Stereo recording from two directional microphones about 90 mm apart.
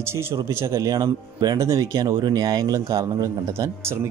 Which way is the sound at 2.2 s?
50° right (ahead or behind).